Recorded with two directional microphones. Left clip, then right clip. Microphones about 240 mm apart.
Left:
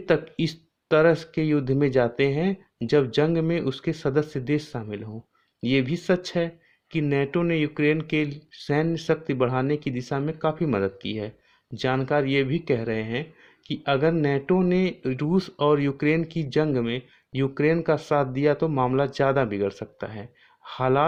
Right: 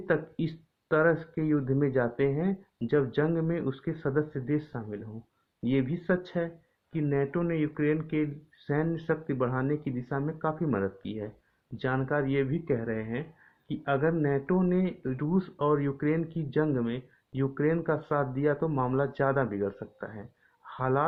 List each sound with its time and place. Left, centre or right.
0.0 s speech: left